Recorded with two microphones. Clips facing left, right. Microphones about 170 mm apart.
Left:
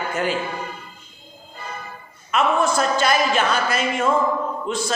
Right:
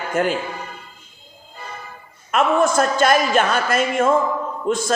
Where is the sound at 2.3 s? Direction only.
50° right (ahead or behind).